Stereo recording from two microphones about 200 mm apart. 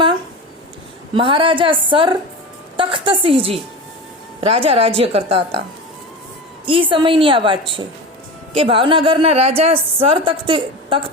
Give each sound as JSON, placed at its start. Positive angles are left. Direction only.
{"t": 1.1, "sound": "a woman's voice", "side_deg": -25}
{"t": 6.7, "sound": "a woman's voice", "side_deg": -25}